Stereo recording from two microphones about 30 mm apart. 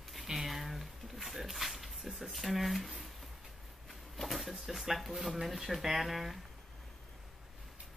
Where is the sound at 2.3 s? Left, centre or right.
Centre.